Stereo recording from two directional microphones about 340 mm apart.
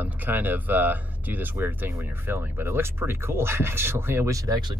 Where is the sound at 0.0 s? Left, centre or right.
Centre.